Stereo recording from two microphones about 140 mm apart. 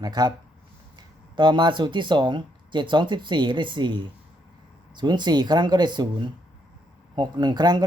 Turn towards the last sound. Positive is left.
turn(degrees=-30)  # may be behind; listen again after turning